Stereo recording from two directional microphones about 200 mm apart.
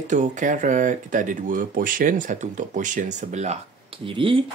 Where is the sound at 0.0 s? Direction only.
40° right (ahead or behind).